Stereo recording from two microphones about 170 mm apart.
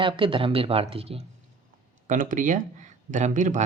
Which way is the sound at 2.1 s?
50° right (ahead or behind).